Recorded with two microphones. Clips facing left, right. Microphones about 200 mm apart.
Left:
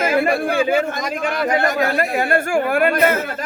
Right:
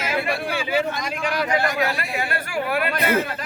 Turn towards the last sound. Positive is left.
turn(degrees=50)  # may be behind; listen again after turning